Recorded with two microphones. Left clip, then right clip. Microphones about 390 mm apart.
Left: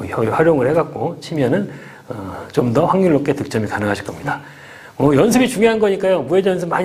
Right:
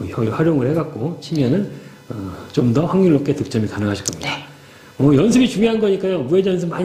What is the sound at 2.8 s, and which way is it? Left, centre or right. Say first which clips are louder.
A man's voice: left 3 dB; left.